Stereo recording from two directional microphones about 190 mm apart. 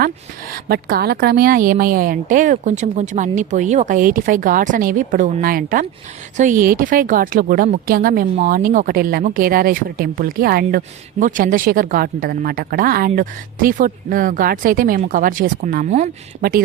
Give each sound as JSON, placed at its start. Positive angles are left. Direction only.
{"t": 0.5, "sound": "speech", "side_deg": -55}